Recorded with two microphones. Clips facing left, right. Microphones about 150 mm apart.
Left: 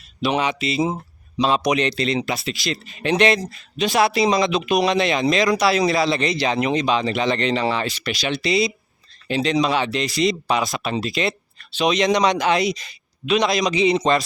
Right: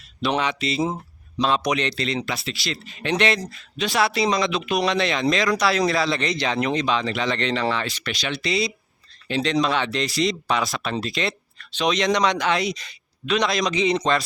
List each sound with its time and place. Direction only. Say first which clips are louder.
0.2 s speech: left 2 dB; 10° left (ahead or behind)
7.3 s speech: left 3 dB; 10° left (ahead or behind)